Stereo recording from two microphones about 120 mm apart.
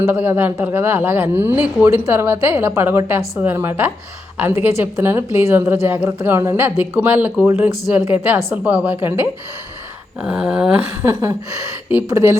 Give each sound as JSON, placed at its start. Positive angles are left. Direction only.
{"t": 0.0, "sound": "a woman's voice", "side_deg": -15}
{"t": 11.0, "sound": "a sound", "side_deg": -30}
{"t": 12.0, "sound": "a woman's voice", "side_deg": -25}